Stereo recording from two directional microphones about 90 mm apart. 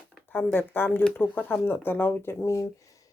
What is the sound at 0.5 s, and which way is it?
Speech, 20° left (ahead or behind).